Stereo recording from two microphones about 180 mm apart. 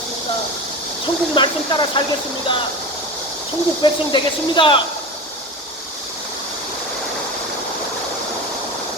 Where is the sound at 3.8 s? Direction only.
25° left (ahead or behind).